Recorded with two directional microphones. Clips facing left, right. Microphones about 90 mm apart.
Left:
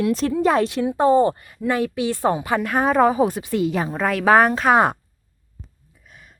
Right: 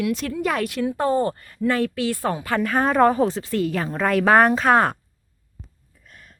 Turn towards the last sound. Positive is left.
turn(degrees=0)  # may be behind; listen again after turning